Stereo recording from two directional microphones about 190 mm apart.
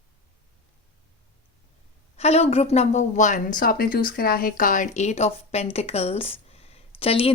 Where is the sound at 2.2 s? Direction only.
35° left (ahead or behind).